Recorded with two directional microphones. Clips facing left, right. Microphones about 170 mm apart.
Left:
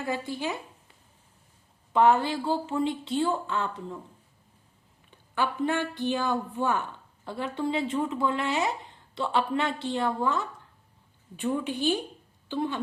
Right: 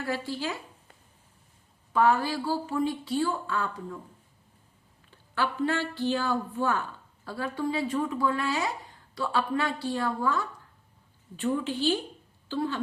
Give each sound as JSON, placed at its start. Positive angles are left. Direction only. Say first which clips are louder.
{"t": 0.0, "sound": "speech", "louder": "left 1 dB", "side_deg": 20}
{"t": 1.9, "sound": "speech", "louder": "left 2 dB", "side_deg": 25}
{"t": 5.3, "sound": "a woman's voice", "louder": "left 1 dB", "side_deg": 20}